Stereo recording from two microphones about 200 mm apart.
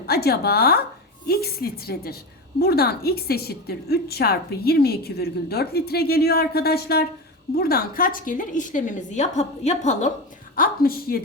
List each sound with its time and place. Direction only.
0.1 s a woman's voice: 50° left (ahead or behind); by 10.1 s 35° left (ahead or behind)
10.5 s a woman's voice: 45° left (ahead or behind)